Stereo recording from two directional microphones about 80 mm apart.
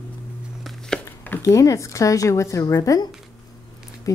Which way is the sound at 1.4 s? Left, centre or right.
Left.